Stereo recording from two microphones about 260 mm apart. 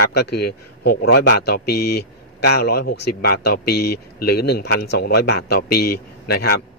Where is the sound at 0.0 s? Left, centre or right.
Left.